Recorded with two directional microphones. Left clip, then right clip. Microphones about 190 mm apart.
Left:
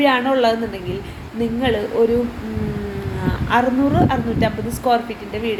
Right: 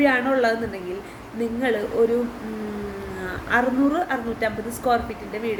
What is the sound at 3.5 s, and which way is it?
A woman's voice, 15° right (ahead or behind).